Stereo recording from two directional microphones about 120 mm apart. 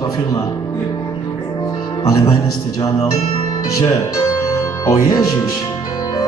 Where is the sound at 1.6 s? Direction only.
30° left (ahead or behind).